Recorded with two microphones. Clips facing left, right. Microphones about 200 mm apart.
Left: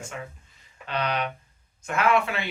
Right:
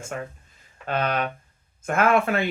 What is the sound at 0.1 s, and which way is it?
Speech, 50° right (ahead or behind).